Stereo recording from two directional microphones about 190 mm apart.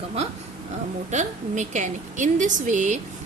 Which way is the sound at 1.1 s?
40° right (ahead or behind).